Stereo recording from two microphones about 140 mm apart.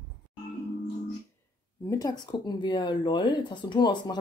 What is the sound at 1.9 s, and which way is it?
Speech, 25° left (ahead or behind).